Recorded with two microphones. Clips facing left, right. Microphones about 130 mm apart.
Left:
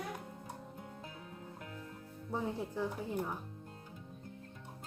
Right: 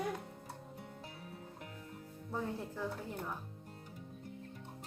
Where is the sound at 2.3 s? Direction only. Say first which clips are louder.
Left 3 dB; 15° left (ahead or behind).